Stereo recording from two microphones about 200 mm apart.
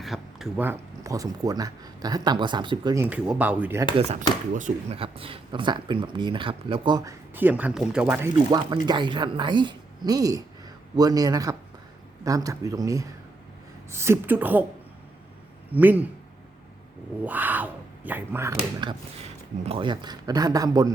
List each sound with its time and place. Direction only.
0.0 s speech: centre (ahead or behind)
3.9 s speech: 30° right (ahead or behind)
4.9 s speech: 25° right (ahead or behind); by 8.3 s 5° right (ahead or behind)
8.4 s speech: 20° right (ahead or behind)
15.7 s speech: 10° right (ahead or behind)
17.2 s speech: 10° right (ahead or behind)